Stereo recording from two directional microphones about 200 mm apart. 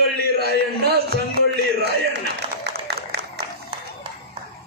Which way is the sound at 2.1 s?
55° right (ahead or behind).